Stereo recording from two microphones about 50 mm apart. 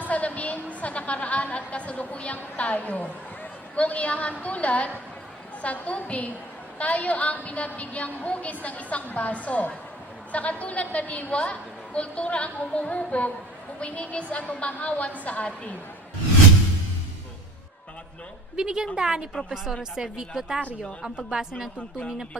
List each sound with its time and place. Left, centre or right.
0.1 s a woman's voice: left
18.5 s a woman's voice: centre